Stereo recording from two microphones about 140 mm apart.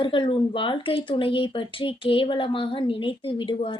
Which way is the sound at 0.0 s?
35° left (ahead or behind).